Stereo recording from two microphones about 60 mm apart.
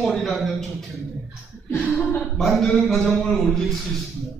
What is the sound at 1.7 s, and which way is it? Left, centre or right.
Speech, centre.